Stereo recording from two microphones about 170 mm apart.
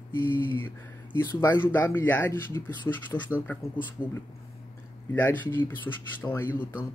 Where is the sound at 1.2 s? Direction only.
15° left (ahead or behind).